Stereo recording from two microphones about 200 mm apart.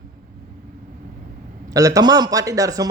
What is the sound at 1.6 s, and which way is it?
A man's voice, 15° right (ahead or behind).